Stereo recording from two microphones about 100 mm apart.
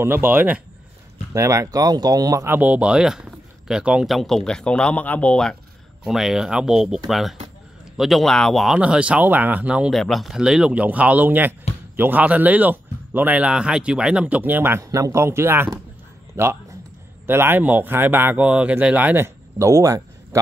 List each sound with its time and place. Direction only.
0.0 s speech: 20° right (ahead or behind)
1.3 s speech: 30° right (ahead or behind)
2.4 s speech: 15° right (ahead or behind); by 5.6 s 10° left (ahead or behind)
6.0 s speech: 5° right (ahead or behind)
8.7 s speech: 10° right (ahead or behind)
9.9 s speech: centre (ahead or behind); by 20.0 s 35° right (ahead or behind)